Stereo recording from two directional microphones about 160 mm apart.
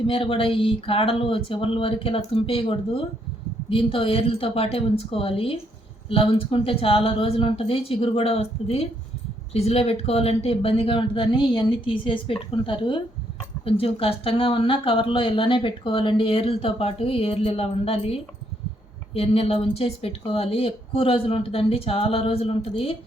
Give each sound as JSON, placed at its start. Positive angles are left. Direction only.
{"t": 0.1, "sound": "speech", "side_deg": 35}